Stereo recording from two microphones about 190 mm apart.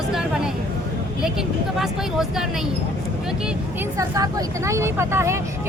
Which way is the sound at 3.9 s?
15° right (ahead or behind).